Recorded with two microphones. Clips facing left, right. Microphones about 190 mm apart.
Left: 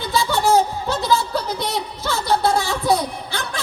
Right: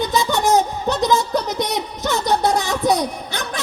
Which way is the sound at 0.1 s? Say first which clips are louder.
Left 3 dB; 20° right (ahead or behind).